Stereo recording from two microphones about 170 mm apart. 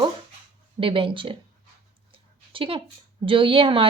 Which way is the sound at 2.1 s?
30° right (ahead or behind).